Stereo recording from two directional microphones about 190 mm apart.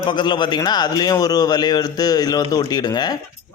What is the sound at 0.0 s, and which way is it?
A man's voice, 25° left (ahead or behind).